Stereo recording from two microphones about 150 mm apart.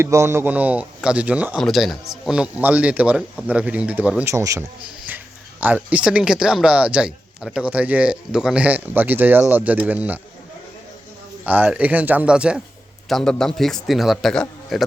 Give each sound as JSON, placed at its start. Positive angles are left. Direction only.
{"t": 0.0, "sound": "a man's voice", "side_deg": -20}
{"t": 11.4, "sound": "a man's voice", "side_deg": -10}